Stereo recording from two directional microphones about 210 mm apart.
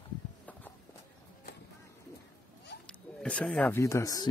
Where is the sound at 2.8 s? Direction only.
5° left (ahead or behind).